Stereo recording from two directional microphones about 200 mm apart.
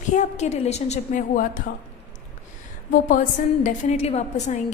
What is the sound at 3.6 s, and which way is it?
A woman's voice, 35° left (ahead or behind).